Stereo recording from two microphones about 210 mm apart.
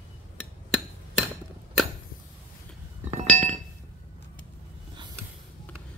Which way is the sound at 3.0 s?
35° right (ahead or behind).